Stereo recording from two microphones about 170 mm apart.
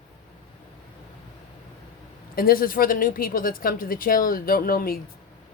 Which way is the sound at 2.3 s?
60° left (ahead or behind).